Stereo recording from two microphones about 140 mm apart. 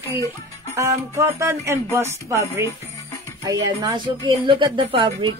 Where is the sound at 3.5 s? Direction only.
30° right (ahead or behind).